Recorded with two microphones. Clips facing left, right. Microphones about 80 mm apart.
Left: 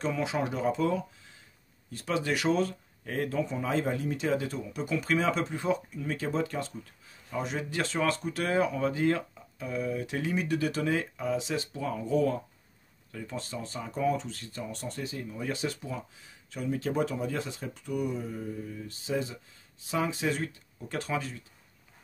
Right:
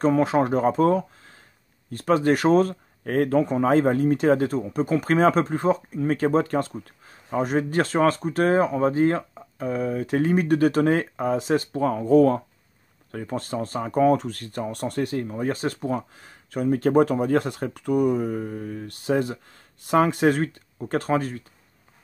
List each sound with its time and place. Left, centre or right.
0.0 s speech: right